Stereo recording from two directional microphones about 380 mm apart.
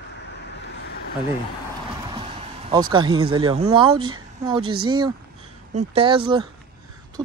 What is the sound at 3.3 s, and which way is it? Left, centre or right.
Speech, centre.